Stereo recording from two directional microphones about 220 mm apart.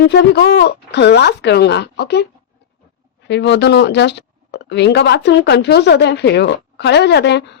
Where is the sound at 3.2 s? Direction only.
50° left (ahead or behind).